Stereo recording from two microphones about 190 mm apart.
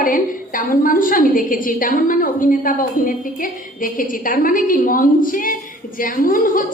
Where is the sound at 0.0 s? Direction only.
45° left (ahead or behind).